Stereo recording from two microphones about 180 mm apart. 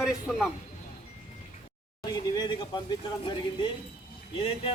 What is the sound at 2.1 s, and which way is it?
Speech, 25° left (ahead or behind).